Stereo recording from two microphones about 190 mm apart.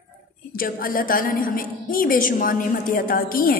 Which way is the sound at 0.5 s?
50° left (ahead or behind).